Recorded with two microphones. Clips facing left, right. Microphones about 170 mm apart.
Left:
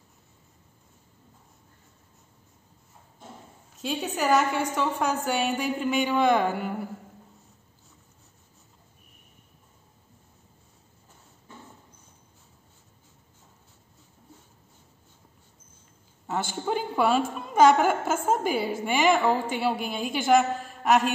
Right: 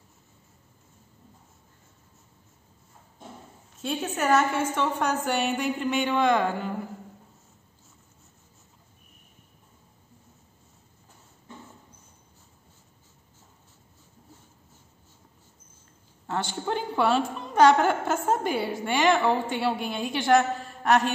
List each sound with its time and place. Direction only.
3.7 s a woman's voice: centre (ahead or behind)
16.3 s a woman's voice: 5° left (ahead or behind)